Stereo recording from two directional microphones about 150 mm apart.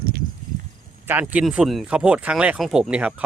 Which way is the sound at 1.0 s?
10° right (ahead or behind).